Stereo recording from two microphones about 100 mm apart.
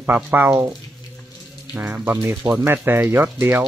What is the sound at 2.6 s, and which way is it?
Speech, 20° right (ahead or behind).